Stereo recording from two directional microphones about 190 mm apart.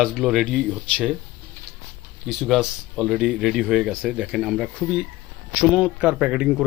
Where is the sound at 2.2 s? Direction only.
Centre (ahead or behind).